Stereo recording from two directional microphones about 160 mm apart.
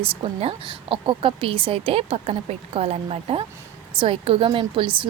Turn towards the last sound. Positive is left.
turn(degrees=-35)  # may be behind; listen again after turning